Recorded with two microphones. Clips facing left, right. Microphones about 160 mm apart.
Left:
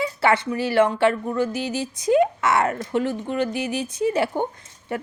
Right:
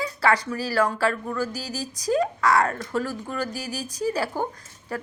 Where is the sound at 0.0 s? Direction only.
25° left (ahead or behind).